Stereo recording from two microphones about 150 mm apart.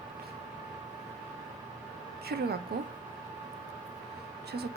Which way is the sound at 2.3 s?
90° right.